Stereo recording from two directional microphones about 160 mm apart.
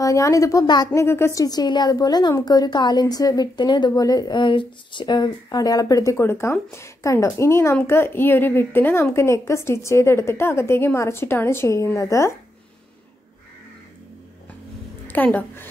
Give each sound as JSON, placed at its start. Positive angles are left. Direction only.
{"t": 0.0, "sound": "a woman's voice", "side_deg": 20}
{"t": 15.0, "sound": "a woman's voice", "side_deg": 10}